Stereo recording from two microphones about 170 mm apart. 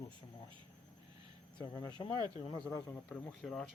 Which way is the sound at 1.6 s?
25° left (ahead or behind).